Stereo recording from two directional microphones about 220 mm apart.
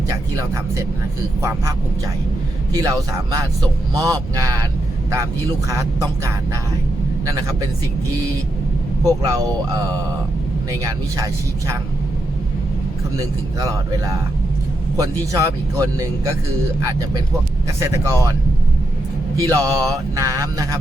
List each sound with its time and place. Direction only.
0.1 s speech: 15° right (ahead or behind)
2.7 s speech: 15° right (ahead or behind)
9.0 s speech: 15° right (ahead or behind)
14.9 s speech: 15° right (ahead or behind)
17.7 s speech: 15° right (ahead or behind)
19.4 s speech: 15° right (ahead or behind)